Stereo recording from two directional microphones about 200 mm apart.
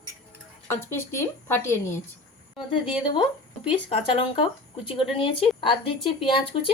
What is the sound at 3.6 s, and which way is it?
Speech, 25° left (ahead or behind).